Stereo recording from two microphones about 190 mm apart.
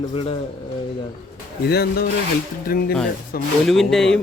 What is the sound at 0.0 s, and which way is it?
Speech, 30° left (ahead or behind).